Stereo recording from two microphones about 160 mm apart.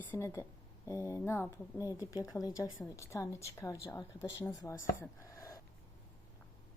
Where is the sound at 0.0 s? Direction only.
15° left (ahead or behind).